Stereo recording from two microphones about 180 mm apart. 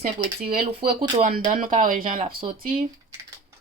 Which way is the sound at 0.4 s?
55° right (ahead or behind).